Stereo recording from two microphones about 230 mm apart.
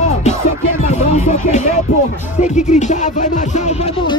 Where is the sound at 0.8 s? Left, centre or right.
Left.